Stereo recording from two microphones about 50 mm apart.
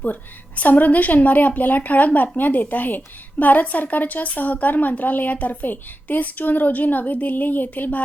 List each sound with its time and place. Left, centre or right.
0.0 s a woman's voice: left